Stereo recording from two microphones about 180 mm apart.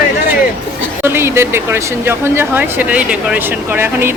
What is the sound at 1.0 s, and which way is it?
Speech, 15° right (ahead or behind).